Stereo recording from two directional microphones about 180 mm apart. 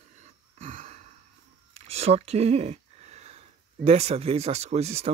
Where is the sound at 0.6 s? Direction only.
40° right (ahead or behind).